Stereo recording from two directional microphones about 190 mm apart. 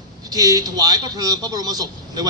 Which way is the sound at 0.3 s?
20° right (ahead or behind).